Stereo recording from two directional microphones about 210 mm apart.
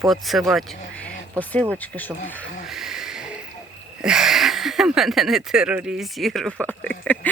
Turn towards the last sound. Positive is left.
turn(degrees=5)  # may be behind; listen again after turning